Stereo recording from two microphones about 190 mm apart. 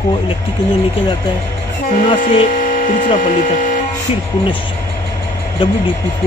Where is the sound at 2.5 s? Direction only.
45° left (ahead or behind).